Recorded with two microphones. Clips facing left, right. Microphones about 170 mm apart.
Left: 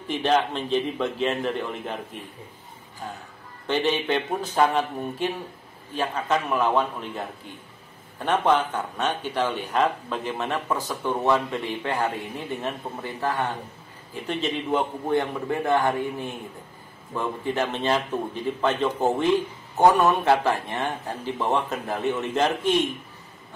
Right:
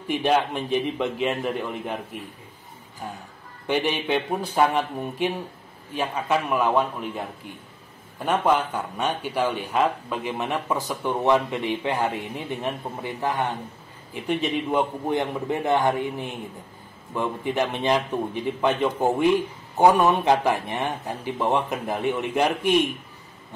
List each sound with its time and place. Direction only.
0.1 s speech: 10° right (ahead or behind)
3.6 s speech: 10° right (ahead or behind)